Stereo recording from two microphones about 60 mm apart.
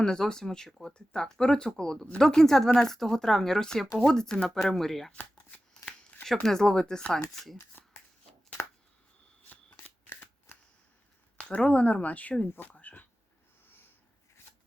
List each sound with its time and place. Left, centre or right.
0.0 s speech: centre
6.4 s speech: centre
11.3 s speech: centre
12.5 s a sound: left